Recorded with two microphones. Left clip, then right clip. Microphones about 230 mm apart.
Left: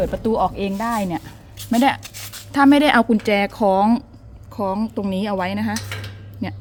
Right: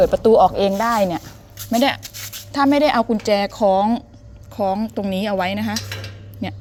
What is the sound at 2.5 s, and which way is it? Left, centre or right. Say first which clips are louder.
Speech: left 2 dB; centre.